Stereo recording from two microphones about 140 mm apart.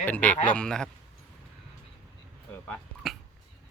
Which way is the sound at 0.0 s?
10° left (ahead or behind).